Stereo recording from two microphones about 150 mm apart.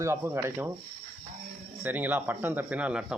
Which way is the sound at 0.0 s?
15° right (ahead or behind).